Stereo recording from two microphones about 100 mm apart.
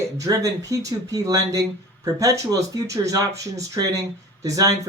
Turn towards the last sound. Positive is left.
turn(degrees=-35)  # may be behind; listen again after turning